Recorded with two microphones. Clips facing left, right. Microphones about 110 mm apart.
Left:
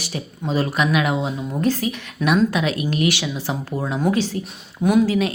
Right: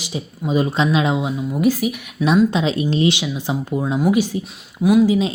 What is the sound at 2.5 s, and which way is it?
A woman's voice, 25° right (ahead or behind).